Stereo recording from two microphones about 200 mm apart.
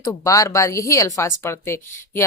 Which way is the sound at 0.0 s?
15° left (ahead or behind).